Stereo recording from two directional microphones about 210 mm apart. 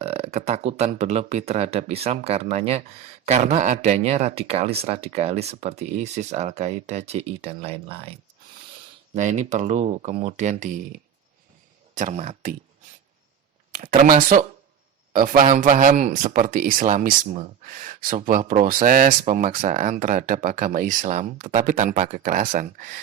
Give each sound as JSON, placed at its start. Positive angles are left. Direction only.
{"t": 0.0, "sound": "speech", "side_deg": -30}
{"t": 9.1, "sound": "speech", "side_deg": -35}
{"t": 11.9, "sound": "speech", "side_deg": -35}
{"t": 13.7, "sound": "speech", "side_deg": -40}